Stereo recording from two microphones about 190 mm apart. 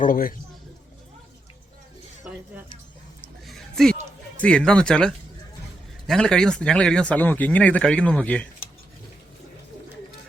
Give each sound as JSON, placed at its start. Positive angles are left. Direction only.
{"t": 0.0, "sound": "a man's voice", "side_deg": 50}
{"t": 3.2, "sound": "a sound", "side_deg": 0}
{"t": 4.4, "sound": "speech", "side_deg": 5}